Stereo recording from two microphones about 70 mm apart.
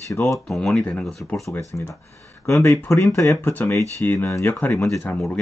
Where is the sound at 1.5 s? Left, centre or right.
Left.